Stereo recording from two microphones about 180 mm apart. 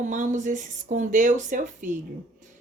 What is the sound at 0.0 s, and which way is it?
Speech, 45° right (ahead or behind).